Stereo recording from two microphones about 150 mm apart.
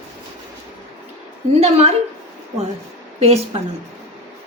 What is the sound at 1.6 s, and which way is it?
Speech, 45° right (ahead or behind).